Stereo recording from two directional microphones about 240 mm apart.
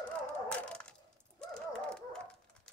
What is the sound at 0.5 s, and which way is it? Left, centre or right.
Dog, centre.